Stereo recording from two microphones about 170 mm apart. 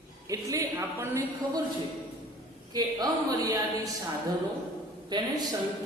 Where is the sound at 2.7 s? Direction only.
25° right (ahead or behind).